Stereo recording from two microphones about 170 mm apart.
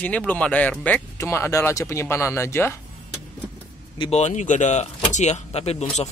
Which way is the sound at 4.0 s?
40° left (ahead or behind).